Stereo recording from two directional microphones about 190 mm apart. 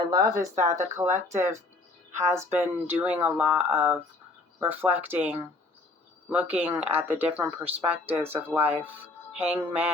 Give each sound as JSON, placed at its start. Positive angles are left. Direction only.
{"t": 0.0, "sound": "speech", "side_deg": -20}
{"t": 6.3, "sound": "speech", "side_deg": -10}